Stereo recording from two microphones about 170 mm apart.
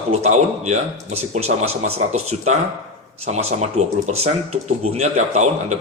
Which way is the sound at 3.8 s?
40° right (ahead or behind).